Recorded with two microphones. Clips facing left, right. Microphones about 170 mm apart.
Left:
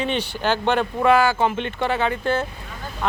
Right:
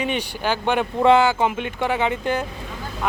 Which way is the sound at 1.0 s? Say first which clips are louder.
Right 2 dB; 20° right (ahead or behind).